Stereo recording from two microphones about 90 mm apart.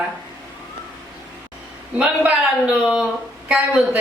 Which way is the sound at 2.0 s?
10° right (ahead or behind).